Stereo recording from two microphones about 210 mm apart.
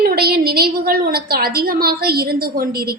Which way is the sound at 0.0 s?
45° right (ahead or behind).